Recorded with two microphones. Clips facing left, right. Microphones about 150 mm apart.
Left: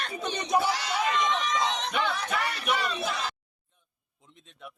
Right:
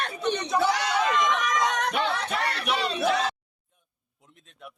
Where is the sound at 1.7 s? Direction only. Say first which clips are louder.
Right 3 dB; 65° right (ahead or behind).